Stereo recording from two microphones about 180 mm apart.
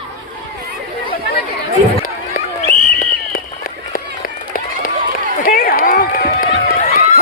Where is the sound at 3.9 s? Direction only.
50° left (ahead or behind).